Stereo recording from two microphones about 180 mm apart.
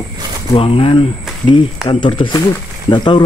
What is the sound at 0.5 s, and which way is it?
Speech, 30° left (ahead or behind).